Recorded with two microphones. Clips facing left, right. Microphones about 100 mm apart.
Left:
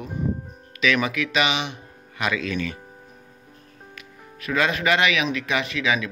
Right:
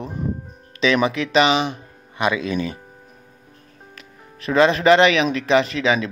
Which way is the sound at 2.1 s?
20° right (ahead or behind).